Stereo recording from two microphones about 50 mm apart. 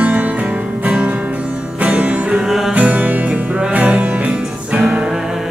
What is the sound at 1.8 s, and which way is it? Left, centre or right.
Music, right.